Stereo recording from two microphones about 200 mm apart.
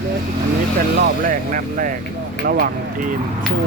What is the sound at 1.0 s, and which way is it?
Speech, 45° right (ahead or behind).